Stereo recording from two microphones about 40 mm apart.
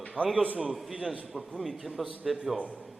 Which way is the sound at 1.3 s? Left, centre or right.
Centre.